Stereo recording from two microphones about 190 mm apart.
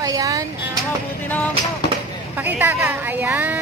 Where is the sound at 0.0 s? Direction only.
20° right (ahead or behind).